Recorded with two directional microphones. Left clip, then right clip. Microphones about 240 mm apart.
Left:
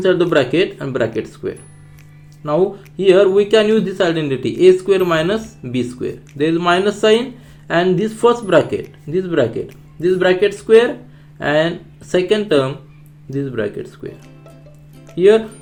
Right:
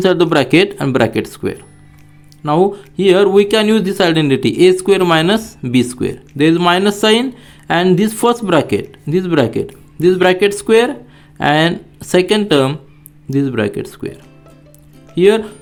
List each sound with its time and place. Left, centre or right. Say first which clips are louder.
0.0 s speech: right 2 dB; right
15.1 s speech: even; right